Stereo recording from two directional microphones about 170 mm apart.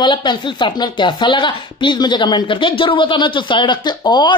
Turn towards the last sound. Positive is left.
turn(degrees=25)  # may be behind; listen again after turning